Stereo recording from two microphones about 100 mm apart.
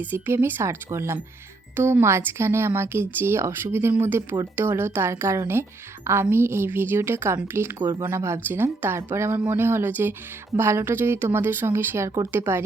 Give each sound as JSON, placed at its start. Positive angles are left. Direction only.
{"t": 0.0, "sound": "speech", "side_deg": -20}